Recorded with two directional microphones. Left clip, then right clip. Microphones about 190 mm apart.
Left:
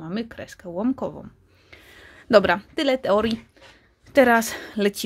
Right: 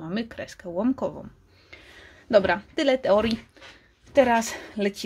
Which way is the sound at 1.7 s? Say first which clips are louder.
Left 1 dB; 10° left (ahead or behind).